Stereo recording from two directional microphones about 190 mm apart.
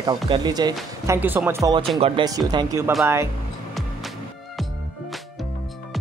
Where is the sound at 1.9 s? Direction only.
30° right (ahead or behind).